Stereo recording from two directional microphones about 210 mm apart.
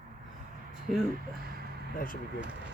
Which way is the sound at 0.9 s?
Centre (ahead or behind).